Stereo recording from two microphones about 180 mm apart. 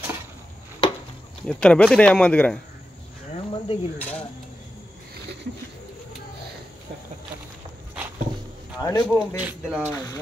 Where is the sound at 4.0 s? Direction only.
5° left (ahead or behind).